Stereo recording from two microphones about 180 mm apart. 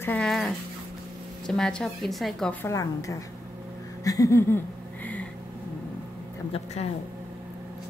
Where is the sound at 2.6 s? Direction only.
20° left (ahead or behind).